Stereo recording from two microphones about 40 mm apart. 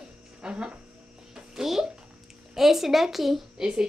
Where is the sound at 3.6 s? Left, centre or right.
Right.